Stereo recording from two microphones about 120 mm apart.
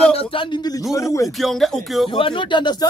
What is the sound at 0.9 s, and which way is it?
Speech, 25° left (ahead or behind).